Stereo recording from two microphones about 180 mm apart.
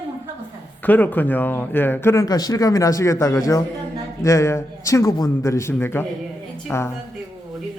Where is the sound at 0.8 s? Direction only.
10° left (ahead or behind).